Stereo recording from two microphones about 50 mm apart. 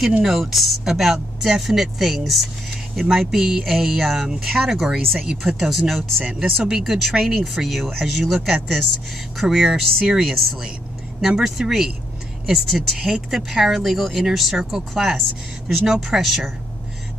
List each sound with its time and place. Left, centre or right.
0.2 s speech: centre
9.4 s speech: centre
10.0 s speech: centre